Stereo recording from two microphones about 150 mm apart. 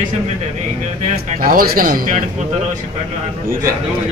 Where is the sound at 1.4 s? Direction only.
70° right (ahead or behind).